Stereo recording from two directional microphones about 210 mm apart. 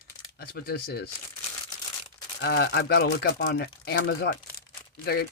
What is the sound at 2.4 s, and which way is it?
Speech, 55° left (ahead or behind).